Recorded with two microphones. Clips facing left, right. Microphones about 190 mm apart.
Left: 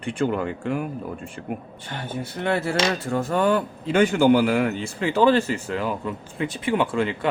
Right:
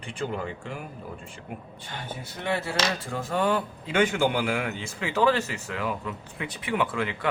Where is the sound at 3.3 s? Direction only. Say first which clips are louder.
Left 4 dB; 60° left (ahead or behind).